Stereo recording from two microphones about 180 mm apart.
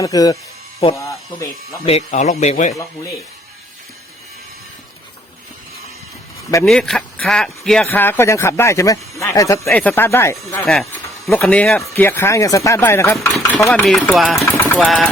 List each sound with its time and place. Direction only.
0.0 s speech: 20° left (ahead or behind)
1.9 s speech: 35° left (ahead or behind)
6.7 s speech: centre (ahead or behind)
10.6 s speech: centre (ahead or behind)
13.1 s speech: centre (ahead or behind)
14.5 s vehicle: 10° left (ahead or behind)
14.8 s speech: centre (ahead or behind)